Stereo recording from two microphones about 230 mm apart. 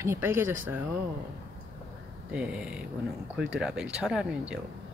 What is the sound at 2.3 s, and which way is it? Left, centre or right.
Speech, centre.